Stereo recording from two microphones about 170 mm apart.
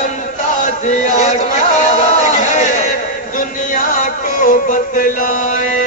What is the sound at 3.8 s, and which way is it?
Music, 50° left (ahead or behind).